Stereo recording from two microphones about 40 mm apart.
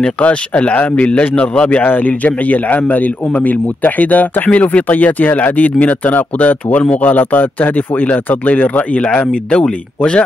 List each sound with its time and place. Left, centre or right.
0.2 s speech: left
1.9 s speech: left